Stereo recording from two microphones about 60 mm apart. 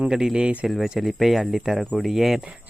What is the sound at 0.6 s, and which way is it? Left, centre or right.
Speech, centre.